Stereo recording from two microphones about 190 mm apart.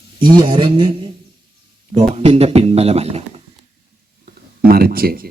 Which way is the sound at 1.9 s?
35° right (ahead or behind).